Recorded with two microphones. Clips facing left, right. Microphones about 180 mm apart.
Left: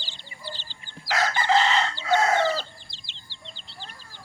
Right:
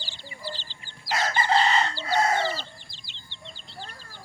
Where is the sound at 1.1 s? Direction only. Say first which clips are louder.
Left 2 dB; 90° left.